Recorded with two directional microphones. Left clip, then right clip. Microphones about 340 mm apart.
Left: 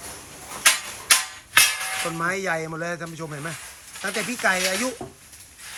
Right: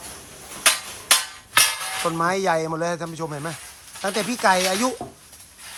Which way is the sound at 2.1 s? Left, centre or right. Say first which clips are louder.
Right 6 dB; centre.